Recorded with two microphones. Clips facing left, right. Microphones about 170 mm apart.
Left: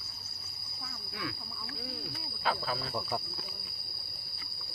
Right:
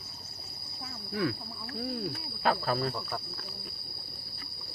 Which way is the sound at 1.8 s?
50° right (ahead or behind).